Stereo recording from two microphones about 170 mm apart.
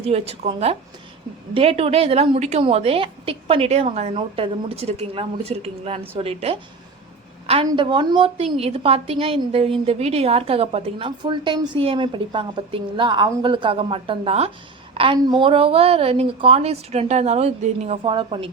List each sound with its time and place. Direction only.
0.0 s a woman's voice: 35° right (ahead or behind)
7.4 s a sound: 35° right (ahead or behind)
7.7 s a woman's voice: 30° right (ahead or behind)